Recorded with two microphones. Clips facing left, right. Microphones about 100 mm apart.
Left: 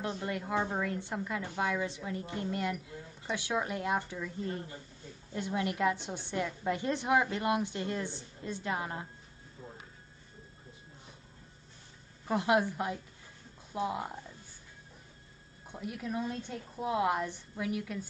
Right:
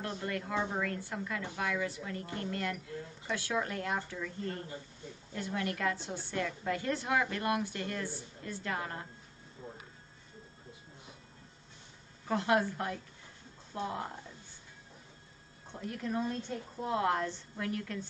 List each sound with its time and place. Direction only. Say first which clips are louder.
0.0 s a woman's voice: left 2 dB; 20° left (ahead or behind)
12.3 s speech: left 1 dB; 15° left (ahead or behind)
15.7 s speech: right 1 dB; 10° left (ahead or behind)